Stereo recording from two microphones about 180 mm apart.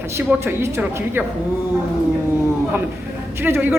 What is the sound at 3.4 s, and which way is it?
Speech, 10° right (ahead or behind).